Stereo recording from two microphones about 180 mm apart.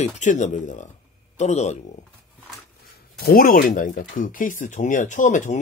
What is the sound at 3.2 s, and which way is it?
Speech, 55° left (ahead or behind).